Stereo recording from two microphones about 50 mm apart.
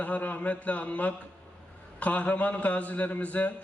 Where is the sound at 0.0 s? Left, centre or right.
Left.